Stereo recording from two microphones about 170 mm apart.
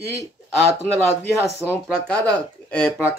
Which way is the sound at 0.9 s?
15° left (ahead or behind).